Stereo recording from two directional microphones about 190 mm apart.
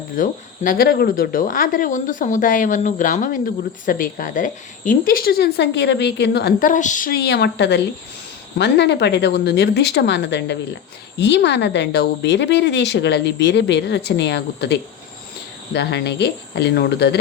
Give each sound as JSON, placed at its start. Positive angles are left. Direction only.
{"t": 0.2, "sound": "speech", "side_deg": 45}